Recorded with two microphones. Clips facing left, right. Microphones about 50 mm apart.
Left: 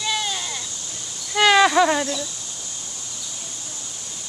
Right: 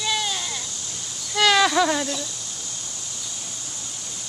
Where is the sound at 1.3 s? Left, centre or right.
Centre.